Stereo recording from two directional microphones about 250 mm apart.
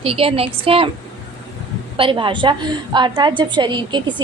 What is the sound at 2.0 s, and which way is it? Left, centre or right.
A woman's voice, centre.